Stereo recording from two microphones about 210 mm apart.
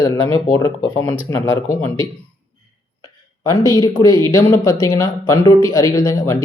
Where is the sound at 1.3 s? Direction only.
15° left (ahead or behind).